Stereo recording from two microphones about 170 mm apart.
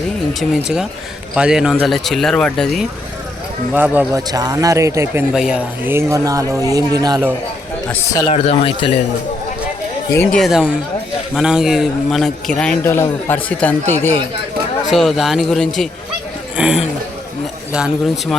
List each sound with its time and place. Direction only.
0.3 s a man's voice: 5° right (ahead or behind)
3.7 s speech: 10° right (ahead or behind)
4.3 s speech: 20° right (ahead or behind)
5.3 s speech: 5° right (ahead or behind); by 7.3 s 20° right (ahead or behind)
7.9 s a man's voice: 10° left (ahead or behind)
8.3 s speech: 35° left (ahead or behind)
10.3 s a man's voice: centre (ahead or behind)
14.8 s a man's voice: centre (ahead or behind)